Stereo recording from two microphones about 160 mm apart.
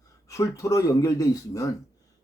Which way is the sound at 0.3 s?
20° left (ahead or behind).